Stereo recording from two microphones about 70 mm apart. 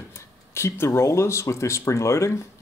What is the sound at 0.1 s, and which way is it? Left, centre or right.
Speech, left.